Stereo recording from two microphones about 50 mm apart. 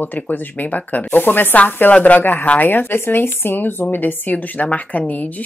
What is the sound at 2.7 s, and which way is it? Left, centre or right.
Speech, left.